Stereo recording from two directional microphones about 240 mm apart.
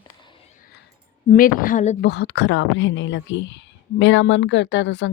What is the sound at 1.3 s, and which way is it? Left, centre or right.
Speech, left.